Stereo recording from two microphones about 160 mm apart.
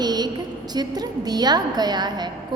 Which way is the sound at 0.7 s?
25° right (ahead or behind).